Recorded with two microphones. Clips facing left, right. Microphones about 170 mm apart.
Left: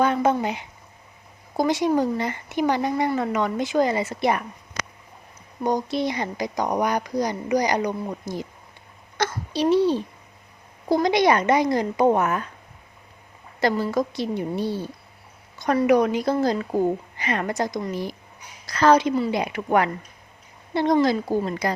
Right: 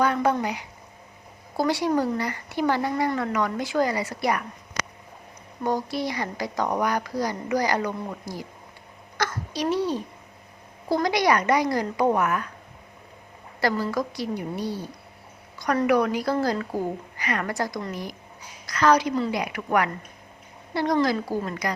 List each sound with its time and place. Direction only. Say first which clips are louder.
0.0 s a sound: left 2 dB; 20° left (ahead or behind)
0.4 s a woman's voice: left 2 dB; 25° left (ahead or behind)
5.6 s a woman's voice: left 3 dB; 20° left (ahead or behind)
9.1 s a sound: left 3 dB; 25° left (ahead or behind)
10.8 s a woman's voice: left 3 dB; 20° left (ahead or behind)
13.6 s a woman's voice: left 3 dB; 25° left (ahead or behind)